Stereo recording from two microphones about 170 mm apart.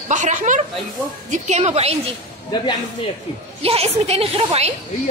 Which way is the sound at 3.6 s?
35° right (ahead or behind).